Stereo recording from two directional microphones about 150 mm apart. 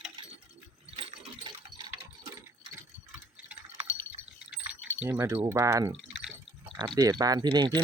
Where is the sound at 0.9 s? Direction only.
40° right (ahead or behind).